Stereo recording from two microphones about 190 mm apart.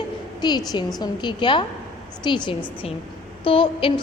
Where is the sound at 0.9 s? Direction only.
20° left (ahead or behind).